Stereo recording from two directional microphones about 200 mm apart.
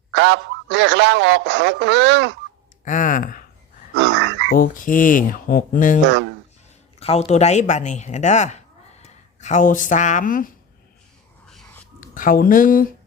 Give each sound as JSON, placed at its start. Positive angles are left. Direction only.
{"t": 0.1, "sound": "speech", "side_deg": -60}
{"t": 2.8, "sound": "speech", "side_deg": 40}
{"t": 3.9, "sound": "frog", "side_deg": -60}
{"t": 4.4, "sound": "speech", "side_deg": 45}
{"t": 7.0, "sound": "speech", "side_deg": 30}
{"t": 11.4, "sound": "a sound", "side_deg": 5}
{"t": 11.9, "sound": "speech", "side_deg": 45}